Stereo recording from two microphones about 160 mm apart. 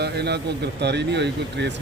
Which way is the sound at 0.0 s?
90° right.